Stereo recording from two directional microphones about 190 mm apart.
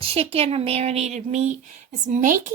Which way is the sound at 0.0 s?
30° right (ahead or behind).